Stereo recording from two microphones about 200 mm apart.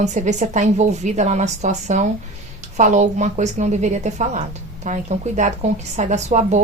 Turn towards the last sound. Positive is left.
turn(degrees=-35)  # may be behind; listen again after turning